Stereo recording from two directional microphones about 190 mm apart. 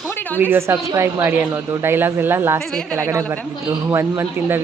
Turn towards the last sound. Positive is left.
turn(degrees=-10)  # may be behind; listen again after turning